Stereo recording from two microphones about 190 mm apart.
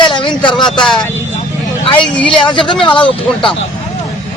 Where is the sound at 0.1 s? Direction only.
25° left (ahead or behind).